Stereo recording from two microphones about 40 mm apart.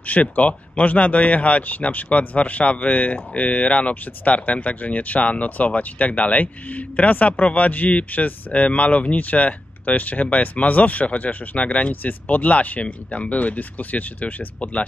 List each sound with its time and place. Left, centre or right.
0.0 s speech: left